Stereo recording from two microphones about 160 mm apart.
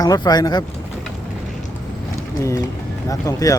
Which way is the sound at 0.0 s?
25° left (ahead or behind).